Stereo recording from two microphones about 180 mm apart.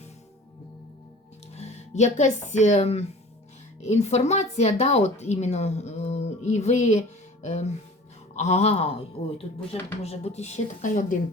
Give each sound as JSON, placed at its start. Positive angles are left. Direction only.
{"t": 1.5, "sound": "speech", "side_deg": 40}
{"t": 10.0, "sound": "speech", "side_deg": 35}